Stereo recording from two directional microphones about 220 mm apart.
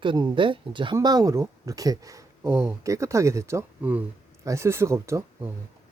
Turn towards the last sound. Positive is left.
turn(degrees=-10)  # may be behind; listen again after turning